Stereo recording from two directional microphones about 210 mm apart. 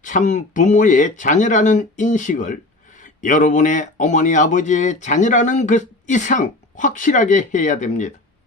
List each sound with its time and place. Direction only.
0.0 s speech: 35° left (ahead or behind)